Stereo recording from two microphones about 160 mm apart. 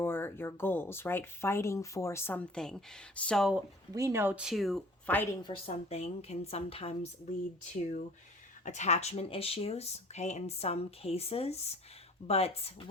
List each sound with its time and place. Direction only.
0.0 s speech: 15° left (ahead or behind)
3.9 s speech: 20° right (ahead or behind); by 5.2 s 5° left (ahead or behind)
5.4 s speech: 30° left (ahead or behind)
5.7 s speech: 40° left (ahead or behind)
7.6 s speech: 50° left (ahead or behind)